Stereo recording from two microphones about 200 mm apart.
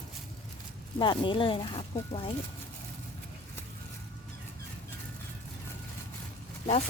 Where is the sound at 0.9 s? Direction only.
25° left (ahead or behind).